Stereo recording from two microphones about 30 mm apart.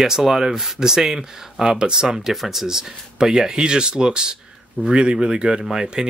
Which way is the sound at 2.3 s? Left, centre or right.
Centre.